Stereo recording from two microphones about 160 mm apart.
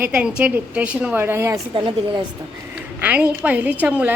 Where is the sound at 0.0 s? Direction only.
10° right (ahead or behind).